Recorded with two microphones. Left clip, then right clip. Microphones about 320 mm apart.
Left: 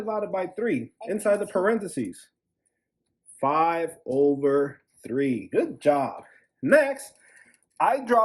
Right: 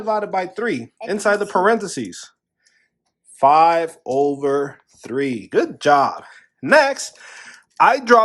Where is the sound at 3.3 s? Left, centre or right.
Centre.